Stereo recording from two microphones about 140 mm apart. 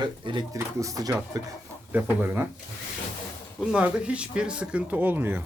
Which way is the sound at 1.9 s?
15° right (ahead or behind).